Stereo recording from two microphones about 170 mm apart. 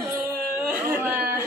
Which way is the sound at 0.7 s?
10° right (ahead or behind).